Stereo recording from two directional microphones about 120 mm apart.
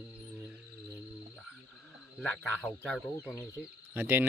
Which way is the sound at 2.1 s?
5° left (ahead or behind).